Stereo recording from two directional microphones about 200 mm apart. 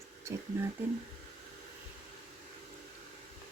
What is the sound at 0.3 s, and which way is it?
Speech, 15° right (ahead or behind).